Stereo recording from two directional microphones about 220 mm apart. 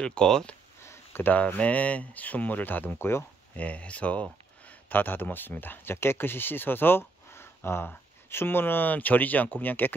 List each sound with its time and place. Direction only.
0.0 s speech: 5° left (ahead or behind)